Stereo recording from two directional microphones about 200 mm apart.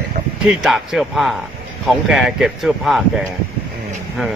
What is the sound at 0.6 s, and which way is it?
Speech, 5° right (ahead or behind).